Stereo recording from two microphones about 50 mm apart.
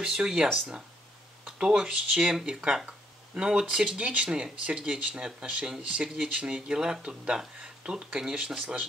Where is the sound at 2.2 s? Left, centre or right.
Centre.